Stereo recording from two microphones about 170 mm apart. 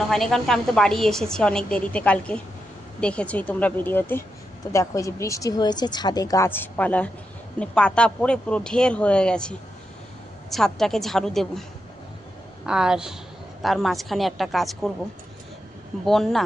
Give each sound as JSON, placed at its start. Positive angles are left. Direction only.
{"t": 0.1, "sound": "a woman's voice", "side_deg": 0}
{"t": 12.6, "sound": "a woman's voice", "side_deg": -5}
{"t": 16.0, "sound": "a woman's voice", "side_deg": 0}